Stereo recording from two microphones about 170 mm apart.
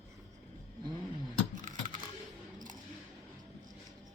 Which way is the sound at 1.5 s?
50° right (ahead or behind).